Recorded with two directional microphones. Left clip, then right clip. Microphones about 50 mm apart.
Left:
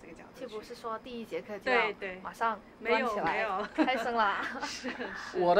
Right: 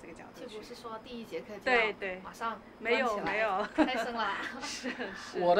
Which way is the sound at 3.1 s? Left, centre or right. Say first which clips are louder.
Left 2 dB; left.